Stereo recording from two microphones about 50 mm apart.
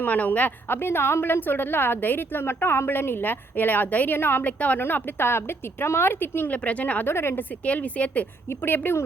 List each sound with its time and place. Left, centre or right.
0.0 s a woman's voice: left
0.8 s a woman's voice: left
4.4 s a woman's voice: left
4.8 s a woman's voice: left
6.5 s a woman's voice: left
7.0 s speech: left
7.3 s a woman's voice: left
8.4 s a woman's voice: left